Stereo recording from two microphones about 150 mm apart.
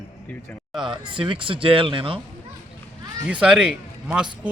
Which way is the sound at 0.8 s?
35° right (ahead or behind).